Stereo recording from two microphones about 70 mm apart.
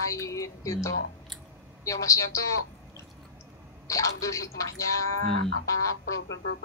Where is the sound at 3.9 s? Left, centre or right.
Left.